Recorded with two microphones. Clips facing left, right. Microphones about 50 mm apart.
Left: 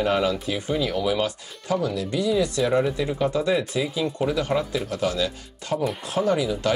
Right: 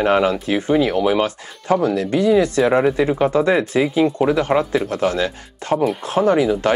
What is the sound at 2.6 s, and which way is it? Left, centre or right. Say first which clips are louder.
Speech: right 6 dB; right.